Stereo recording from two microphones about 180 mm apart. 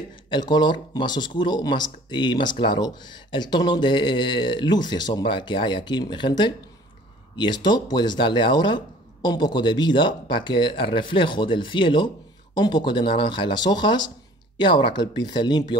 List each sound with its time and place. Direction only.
0.3 s speech: 25° left (ahead or behind)